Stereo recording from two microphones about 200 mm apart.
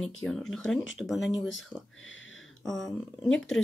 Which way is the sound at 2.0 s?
75° left (ahead or behind).